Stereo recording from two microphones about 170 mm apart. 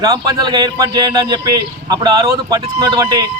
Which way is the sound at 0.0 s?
25° right (ahead or behind).